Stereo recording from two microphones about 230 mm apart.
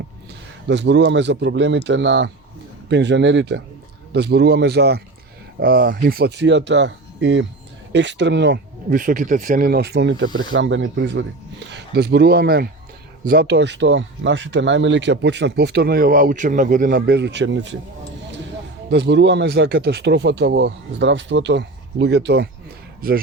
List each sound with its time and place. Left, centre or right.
0.7 s speech: right
18.9 s speech: right